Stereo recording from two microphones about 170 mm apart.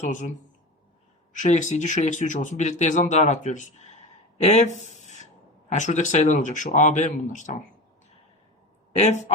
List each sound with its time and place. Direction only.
0.0 s speech: 45° left (ahead or behind)
1.3 s speech: 45° left (ahead or behind)
8.9 s speech: 40° left (ahead or behind)